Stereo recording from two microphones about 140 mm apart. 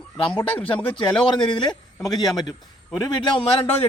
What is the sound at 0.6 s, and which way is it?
Speech, 10° left (ahead or behind).